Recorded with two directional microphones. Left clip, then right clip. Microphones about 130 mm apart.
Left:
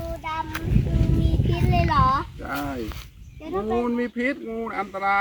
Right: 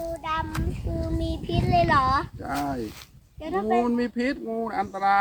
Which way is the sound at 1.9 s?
20° right (ahead or behind).